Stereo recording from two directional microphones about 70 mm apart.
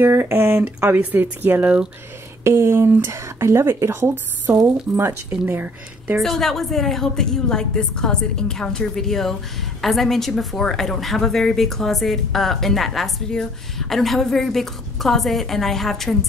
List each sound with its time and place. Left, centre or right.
0.0 s speech: right
2.4 s speech: right
6.2 s a woman's voice: centre